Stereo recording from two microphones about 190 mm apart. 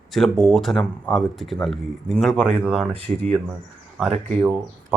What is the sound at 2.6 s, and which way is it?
Speech, 5° right (ahead or behind).